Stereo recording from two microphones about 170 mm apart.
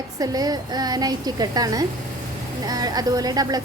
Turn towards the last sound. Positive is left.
turn(degrees=-20)  # may be behind; listen again after turning